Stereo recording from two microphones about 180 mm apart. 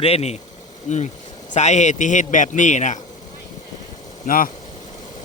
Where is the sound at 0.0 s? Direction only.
35° left (ahead or behind).